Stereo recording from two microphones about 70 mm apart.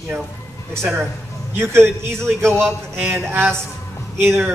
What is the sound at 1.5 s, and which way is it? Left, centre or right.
Speech, right.